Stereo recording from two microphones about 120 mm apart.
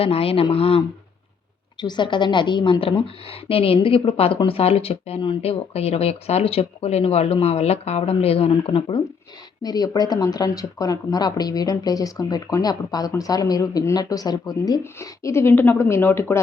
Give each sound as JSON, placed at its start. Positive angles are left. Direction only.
{"t": 0.0, "sound": "a woman's voice", "side_deg": 55}
{"t": 1.8, "sound": "a woman's voice", "side_deg": 40}
{"t": 9.6, "sound": "speech", "side_deg": 35}
{"t": 14.9, "sound": "speech", "side_deg": 25}